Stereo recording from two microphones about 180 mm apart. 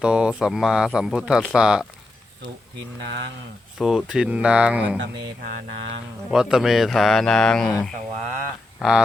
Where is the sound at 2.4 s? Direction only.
85° right.